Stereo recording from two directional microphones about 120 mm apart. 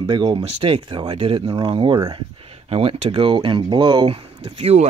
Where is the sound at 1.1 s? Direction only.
55° right (ahead or behind).